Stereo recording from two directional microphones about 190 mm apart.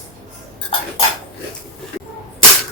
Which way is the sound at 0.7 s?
30° left (ahead or behind).